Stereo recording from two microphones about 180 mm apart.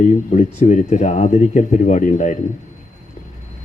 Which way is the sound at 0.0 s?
40° left (ahead or behind).